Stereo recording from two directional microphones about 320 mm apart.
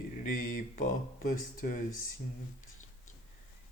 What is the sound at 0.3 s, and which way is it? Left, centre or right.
Speech, left.